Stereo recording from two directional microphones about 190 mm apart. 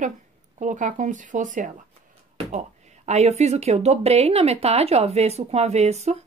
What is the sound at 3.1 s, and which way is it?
A woman's voice, 35° right (ahead or behind).